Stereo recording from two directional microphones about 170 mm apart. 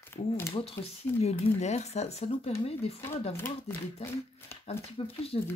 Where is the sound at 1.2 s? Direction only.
40° left (ahead or behind).